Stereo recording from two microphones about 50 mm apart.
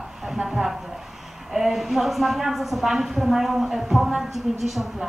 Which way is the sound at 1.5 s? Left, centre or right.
Centre.